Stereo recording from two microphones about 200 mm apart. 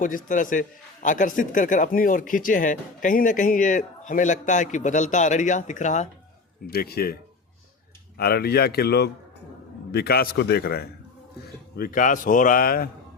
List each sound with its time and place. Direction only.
0.0 s speech: 40° left (ahead or behind)
6.7 s speech: 50° left (ahead or behind)
8.2 s speech: 50° left (ahead or behind)